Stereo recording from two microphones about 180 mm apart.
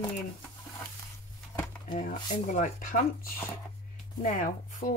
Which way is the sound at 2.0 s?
40° left (ahead or behind).